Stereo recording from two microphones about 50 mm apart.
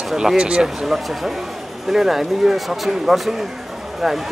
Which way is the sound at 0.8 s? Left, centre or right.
Centre.